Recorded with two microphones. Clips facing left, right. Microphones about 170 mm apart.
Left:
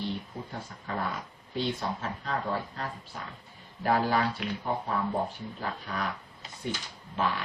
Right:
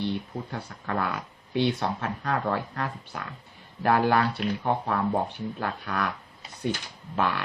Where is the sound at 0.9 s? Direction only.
70° right (ahead or behind).